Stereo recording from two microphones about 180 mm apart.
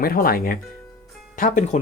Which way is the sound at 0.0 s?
55° left (ahead or behind).